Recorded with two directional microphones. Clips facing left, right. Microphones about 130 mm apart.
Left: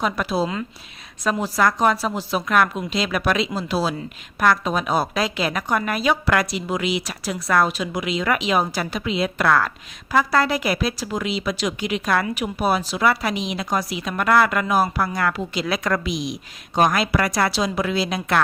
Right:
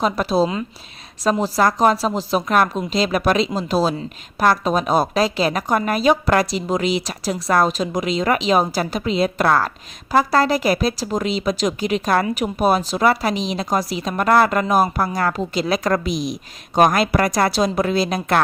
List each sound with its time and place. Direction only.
0.0 s a woman's voice: 35° right (ahead or behind)